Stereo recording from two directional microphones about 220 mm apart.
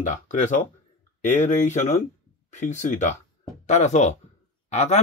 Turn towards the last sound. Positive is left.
turn(degrees=30)  # may be behind; listen again after turning